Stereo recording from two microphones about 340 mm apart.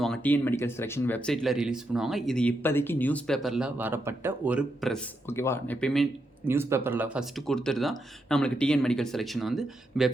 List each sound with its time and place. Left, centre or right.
0.0 s speech: centre